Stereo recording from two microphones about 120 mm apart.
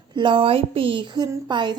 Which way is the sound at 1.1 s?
35° right (ahead or behind).